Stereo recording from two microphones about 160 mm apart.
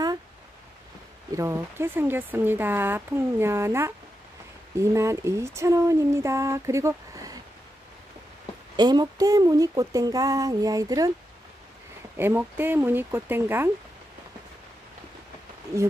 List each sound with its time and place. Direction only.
1.3 s speech: 20° right (ahead or behind)
8.7 s speech: 25° right (ahead or behind)
12.2 s speech: 15° right (ahead or behind)